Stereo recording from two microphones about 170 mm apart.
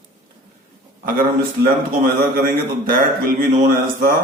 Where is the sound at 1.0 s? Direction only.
55° right (ahead or behind).